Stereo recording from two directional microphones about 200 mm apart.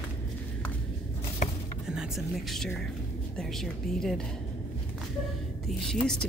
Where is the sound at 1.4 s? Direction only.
35° left (ahead or behind).